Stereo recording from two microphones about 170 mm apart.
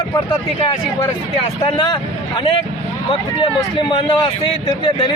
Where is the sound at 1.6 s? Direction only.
30° left (ahead or behind).